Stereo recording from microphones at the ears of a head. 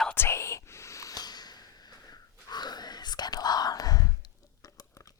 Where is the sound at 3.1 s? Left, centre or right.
Left.